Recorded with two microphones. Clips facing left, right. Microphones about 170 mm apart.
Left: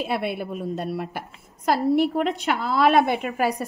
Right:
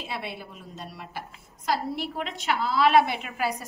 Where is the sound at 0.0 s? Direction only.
55° left (ahead or behind).